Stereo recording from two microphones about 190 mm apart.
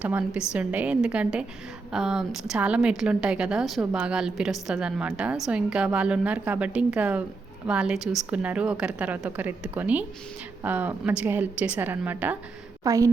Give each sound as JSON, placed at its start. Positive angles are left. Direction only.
{"t": 0.0, "sound": "a woman's voice", "side_deg": -5}